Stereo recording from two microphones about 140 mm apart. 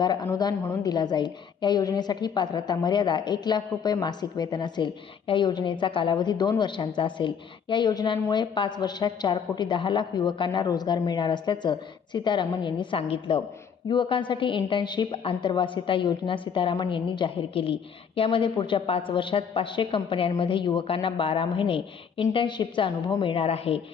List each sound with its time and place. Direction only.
0.0 s a woman's voice: 30° left (ahead or behind)